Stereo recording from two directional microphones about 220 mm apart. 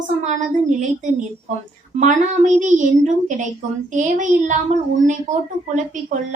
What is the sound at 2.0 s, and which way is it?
A woman's voice, 35° right (ahead or behind).